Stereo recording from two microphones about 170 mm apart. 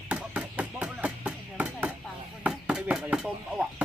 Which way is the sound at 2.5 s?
5° right (ahead or behind).